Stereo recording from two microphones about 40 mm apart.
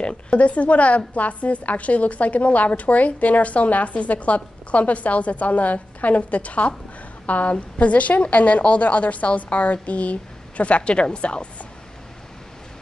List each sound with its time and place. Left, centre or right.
0.0 s a woman's voice: left